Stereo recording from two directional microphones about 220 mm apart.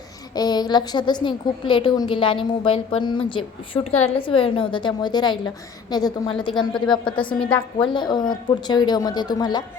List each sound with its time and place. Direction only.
0.3 s a woman's voice: 20° left (ahead or behind)